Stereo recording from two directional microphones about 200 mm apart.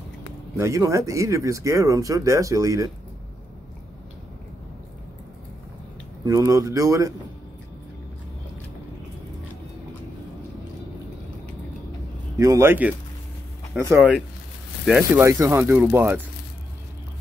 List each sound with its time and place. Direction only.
0.6 s speech: 15° right (ahead or behind)
6.2 s speech: 15° right (ahead or behind)
12.4 s speech: 15° right (ahead or behind)